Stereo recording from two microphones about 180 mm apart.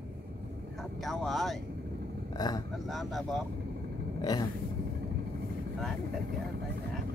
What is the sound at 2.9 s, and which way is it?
Speech, centre (ahead or behind).